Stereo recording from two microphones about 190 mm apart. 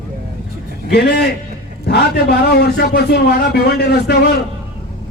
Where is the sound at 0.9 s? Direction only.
60° left (ahead or behind).